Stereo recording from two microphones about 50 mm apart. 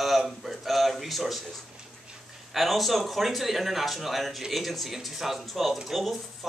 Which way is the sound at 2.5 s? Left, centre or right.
Centre.